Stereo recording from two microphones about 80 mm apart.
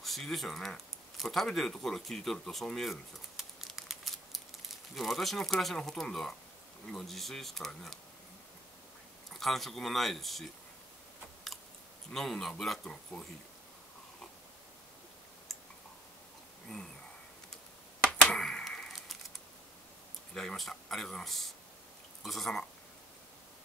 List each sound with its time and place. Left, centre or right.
0.0 s speech: centre
9.3 s speech: centre
12.1 s speech: centre
18.1 s a sound: centre
20.3 s speech: centre